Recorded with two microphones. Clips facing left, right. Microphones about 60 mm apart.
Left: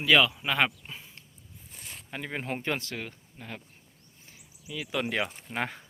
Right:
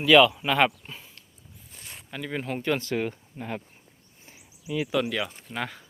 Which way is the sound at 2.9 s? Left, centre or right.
Right.